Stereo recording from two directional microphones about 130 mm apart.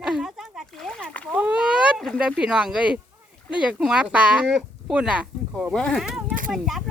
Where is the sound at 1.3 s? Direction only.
10° right (ahead or behind).